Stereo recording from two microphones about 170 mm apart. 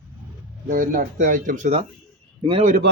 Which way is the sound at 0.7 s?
55° right (ahead or behind).